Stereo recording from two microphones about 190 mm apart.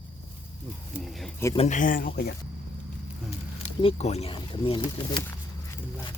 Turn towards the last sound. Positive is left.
turn(degrees=25)  # may be behind; listen again after turning